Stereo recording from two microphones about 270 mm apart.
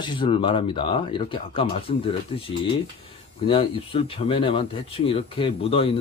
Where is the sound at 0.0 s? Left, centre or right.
Centre.